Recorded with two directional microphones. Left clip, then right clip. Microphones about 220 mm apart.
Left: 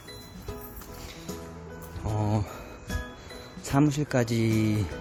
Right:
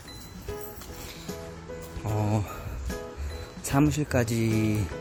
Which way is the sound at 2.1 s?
5° left (ahead or behind).